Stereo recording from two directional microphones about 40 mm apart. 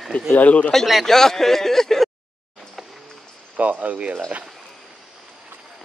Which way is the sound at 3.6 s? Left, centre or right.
Right.